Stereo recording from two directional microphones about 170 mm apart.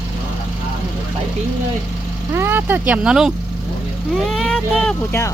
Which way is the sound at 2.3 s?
15° right (ahead or behind).